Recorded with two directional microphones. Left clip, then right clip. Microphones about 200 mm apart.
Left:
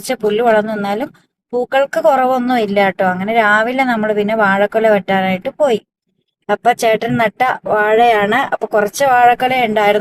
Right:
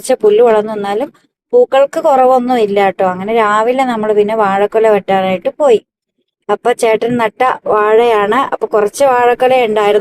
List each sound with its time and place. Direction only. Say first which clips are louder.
0.1 s speech: right 5 dB; 10° left (ahead or behind)